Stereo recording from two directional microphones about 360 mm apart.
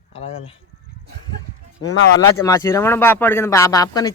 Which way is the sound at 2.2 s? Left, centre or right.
Centre.